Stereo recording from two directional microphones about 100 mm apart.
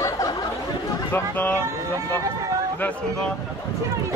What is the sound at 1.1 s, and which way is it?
Speech, 20° left (ahead or behind).